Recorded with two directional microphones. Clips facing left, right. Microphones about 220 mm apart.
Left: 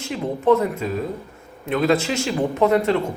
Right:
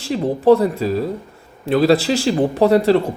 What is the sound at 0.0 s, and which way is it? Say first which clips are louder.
Speech: right 5 dB; 35° right (ahead or behind).